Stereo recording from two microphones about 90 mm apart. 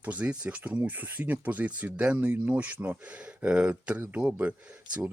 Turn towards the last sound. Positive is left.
turn(degrees=-15)  # may be behind; listen again after turning